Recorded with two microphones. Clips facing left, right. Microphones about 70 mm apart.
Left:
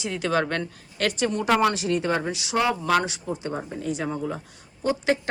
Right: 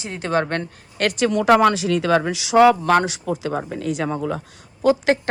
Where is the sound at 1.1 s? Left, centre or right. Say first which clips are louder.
Right 7 dB; right.